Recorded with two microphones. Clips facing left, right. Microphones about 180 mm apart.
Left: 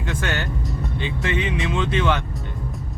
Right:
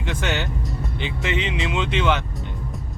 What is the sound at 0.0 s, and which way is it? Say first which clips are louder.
Speech: right 1 dB; 20° right (ahead or behind).